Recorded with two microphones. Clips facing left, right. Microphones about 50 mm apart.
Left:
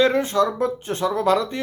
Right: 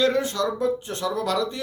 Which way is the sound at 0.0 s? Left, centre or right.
Left.